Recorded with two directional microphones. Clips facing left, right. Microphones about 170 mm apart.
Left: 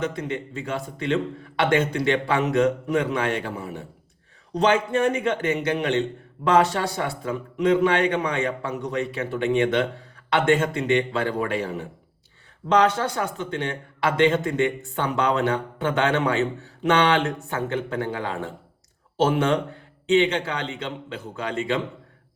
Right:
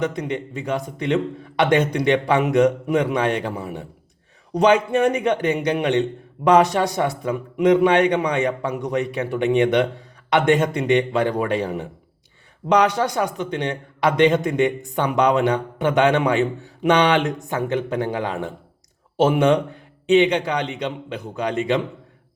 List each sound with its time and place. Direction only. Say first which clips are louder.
0.0 s a man's voice: right 3 dB; 15° right (ahead or behind)